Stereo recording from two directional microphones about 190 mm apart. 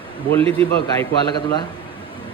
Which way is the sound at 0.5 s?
15° left (ahead or behind).